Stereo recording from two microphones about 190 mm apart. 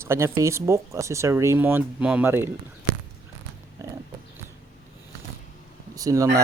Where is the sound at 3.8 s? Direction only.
15° right (ahead or behind).